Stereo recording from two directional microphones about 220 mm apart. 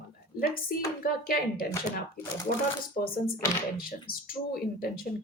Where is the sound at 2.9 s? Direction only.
40° left (ahead or behind).